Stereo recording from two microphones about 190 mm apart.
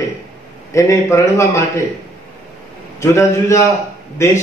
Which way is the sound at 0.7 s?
15° left (ahead or behind).